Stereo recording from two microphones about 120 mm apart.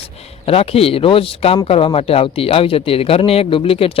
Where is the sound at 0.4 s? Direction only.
55° left (ahead or behind).